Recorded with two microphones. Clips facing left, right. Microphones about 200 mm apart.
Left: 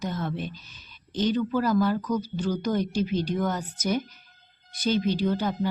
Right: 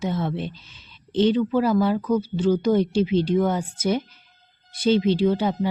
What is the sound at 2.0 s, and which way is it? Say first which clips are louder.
Speech: right 6 dB; 25° right (ahead or behind).